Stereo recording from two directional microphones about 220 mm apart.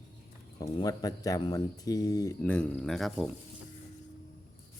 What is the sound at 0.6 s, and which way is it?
Speech, 15° left (ahead or behind).